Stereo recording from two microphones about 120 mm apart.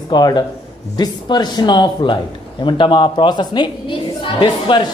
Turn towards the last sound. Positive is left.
turn(degrees=40)  # may be behind; listen again after turning